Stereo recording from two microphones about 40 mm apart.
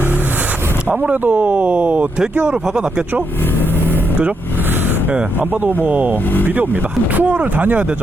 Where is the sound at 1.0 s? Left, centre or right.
Right.